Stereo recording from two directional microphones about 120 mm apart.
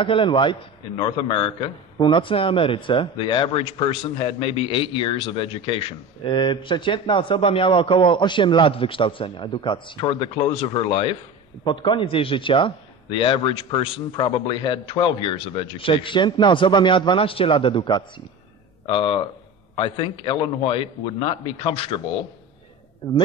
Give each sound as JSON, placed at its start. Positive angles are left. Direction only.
{"t": 0.0, "sound": "speech", "side_deg": 45}
{"t": 11.6, "sound": "speech", "side_deg": 40}